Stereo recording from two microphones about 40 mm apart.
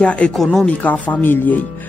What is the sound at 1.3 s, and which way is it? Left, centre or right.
Speech, left.